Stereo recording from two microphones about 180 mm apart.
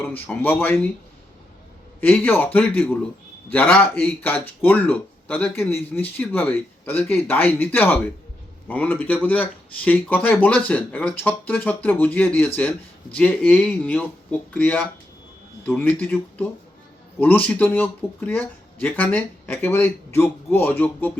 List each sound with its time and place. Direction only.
0.0 s speech: 10° left (ahead or behind)
2.0 s speech: 10° left (ahead or behind)